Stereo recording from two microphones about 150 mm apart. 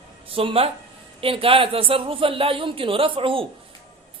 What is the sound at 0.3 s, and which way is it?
A man's voice, 40° right (ahead or behind).